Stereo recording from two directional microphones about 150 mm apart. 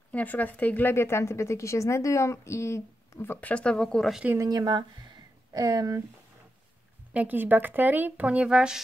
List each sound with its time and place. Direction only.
0.1 s speech: 10° left (ahead or behind); by 4.4 s 5° right (ahead or behind)
4.4 s speech: 25° right (ahead or behind)
7.2 s a woman's voice: 10° right (ahead or behind)